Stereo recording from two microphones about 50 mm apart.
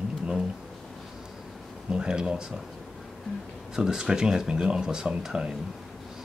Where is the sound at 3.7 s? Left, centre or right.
Centre.